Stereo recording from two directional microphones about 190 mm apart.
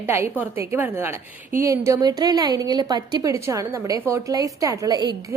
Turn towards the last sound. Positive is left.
turn(degrees=-20)  # may be behind; listen again after turning